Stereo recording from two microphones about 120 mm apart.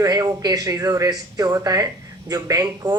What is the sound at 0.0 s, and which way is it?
A man's voice, 35° right (ahead or behind).